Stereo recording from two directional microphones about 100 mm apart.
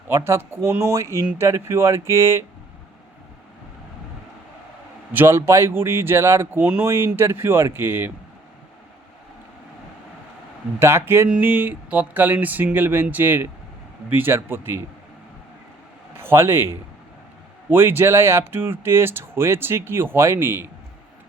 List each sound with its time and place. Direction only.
0.3 s speech: 25° right (ahead or behind)
5.1 s speech: 25° right (ahead or behind)
10.8 s speech: 25° right (ahead or behind)
16.1 s speech: 25° right (ahead or behind)